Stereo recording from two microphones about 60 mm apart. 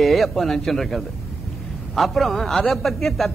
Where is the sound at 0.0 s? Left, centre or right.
Centre.